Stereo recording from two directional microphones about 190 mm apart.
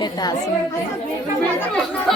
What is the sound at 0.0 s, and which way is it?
Speech, 20° left (ahead or behind).